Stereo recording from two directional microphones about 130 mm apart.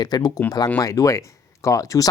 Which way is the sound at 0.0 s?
30° left (ahead or behind).